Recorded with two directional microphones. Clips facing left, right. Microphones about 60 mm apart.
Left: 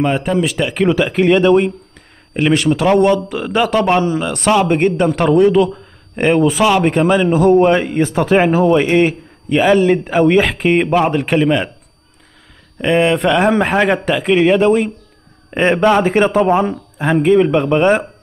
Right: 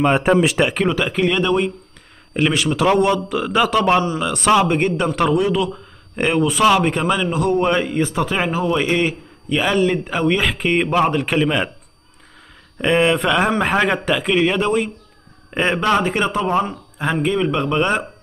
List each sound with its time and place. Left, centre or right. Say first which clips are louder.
0.0 s speech: right 1 dB; centre
0.8 s a man's voice: left 6 dB; centre
6.8 s a man's voice: left 6 dB; centre
7.3 s a man's voice: left 8 dB; centre
12.8 s a man's voice: left 3 dB; centre
16.0 s a man's voice: left 7 dB; left